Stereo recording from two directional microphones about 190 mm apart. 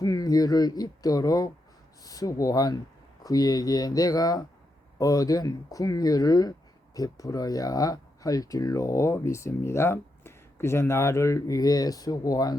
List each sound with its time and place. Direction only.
0.0 s speech: 20° left (ahead or behind)